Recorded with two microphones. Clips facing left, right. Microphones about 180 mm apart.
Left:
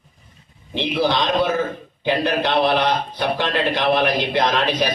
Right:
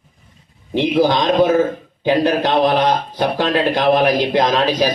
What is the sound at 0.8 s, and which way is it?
A man's voice, 45° right (ahead or behind).